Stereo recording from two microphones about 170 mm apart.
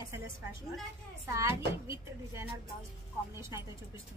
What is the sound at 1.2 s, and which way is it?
A woman's voice, 15° right (ahead or behind).